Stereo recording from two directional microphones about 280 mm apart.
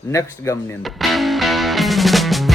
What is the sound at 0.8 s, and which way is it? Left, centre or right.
Music, centre.